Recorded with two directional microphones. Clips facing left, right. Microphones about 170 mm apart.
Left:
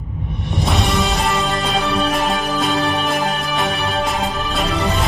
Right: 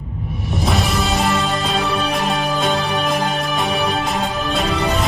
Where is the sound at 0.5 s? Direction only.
Centre (ahead or behind).